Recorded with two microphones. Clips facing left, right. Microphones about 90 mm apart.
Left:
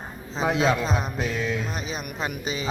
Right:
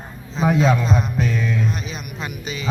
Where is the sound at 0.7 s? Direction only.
Centre (ahead or behind).